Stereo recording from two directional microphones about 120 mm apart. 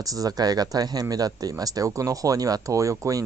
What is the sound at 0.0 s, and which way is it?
Speech, 30° right (ahead or behind).